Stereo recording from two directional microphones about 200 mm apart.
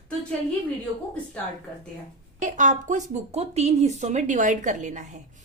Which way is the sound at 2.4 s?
40° right (ahead or behind).